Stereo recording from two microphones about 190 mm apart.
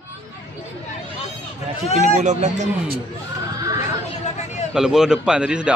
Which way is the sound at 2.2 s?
40° right (ahead or behind).